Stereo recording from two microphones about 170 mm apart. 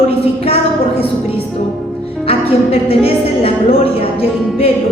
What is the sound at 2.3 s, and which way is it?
A woman's voice, 35° left (ahead or behind).